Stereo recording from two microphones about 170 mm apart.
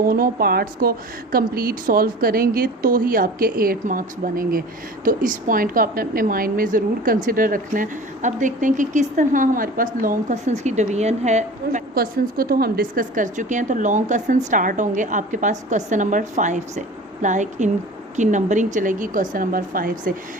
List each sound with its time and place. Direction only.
0.0 s a woman's voice: 60° right (ahead or behind); by 11.8 s 40° right (ahead or behind)
11.9 s a woman's voice: 65° right (ahead or behind)